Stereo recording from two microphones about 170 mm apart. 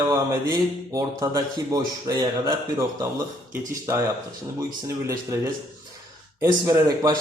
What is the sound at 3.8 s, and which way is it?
A man's voice, 15° right (ahead or behind).